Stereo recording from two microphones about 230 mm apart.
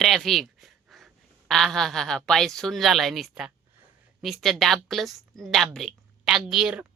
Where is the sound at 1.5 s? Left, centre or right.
Centre.